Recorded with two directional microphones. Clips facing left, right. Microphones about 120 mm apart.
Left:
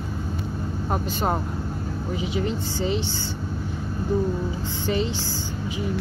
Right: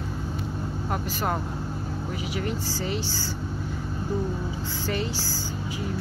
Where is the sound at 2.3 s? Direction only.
20° left (ahead or behind).